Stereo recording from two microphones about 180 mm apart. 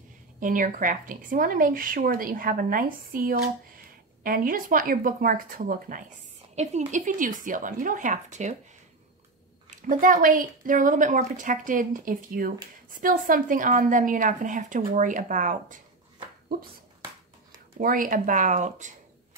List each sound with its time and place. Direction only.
0.4 s speech: 45° right (ahead or behind)
9.7 s speech: 50° right (ahead or behind)
17.7 s speech: 50° right (ahead or behind)